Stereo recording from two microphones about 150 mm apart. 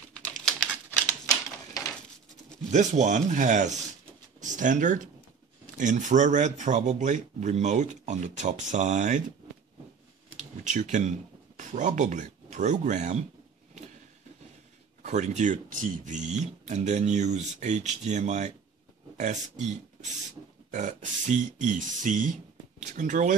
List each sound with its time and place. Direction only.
0.1 s typewriter: 5° left (ahead or behind)
1.0 s typewriter: 20° left (ahead or behind)
2.7 s speech: 50° right (ahead or behind)
10.3 s computer keyboard: 55° right (ahead or behind)
11.5 s speech: 55° right (ahead or behind)
15.0 s a man's voice: 50° right (ahead or behind)